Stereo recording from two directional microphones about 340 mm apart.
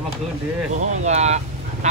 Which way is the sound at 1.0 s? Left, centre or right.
Centre.